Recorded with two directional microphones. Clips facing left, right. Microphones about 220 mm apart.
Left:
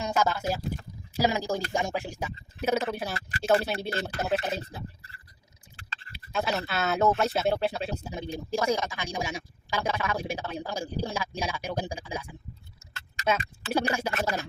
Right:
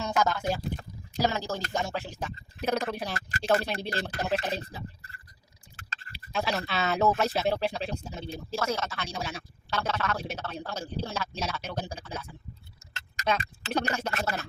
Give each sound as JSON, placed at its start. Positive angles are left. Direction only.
{"t": 0.0, "sound": "speech", "side_deg": 10}
{"t": 6.3, "sound": "speech", "side_deg": 0}